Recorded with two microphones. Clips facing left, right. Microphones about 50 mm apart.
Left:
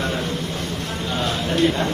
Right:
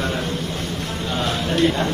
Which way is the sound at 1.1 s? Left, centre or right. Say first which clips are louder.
Right 1 dB; right.